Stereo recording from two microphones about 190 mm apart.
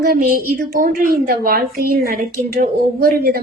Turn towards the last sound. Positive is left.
turn(degrees=-50)  # may be behind; listen again after turning